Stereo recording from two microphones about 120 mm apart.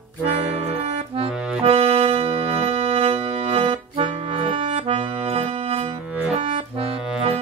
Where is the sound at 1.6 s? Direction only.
55° right (ahead or behind).